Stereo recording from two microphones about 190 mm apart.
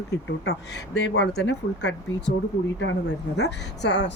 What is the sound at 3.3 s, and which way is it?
Speech, 65° left (ahead or behind).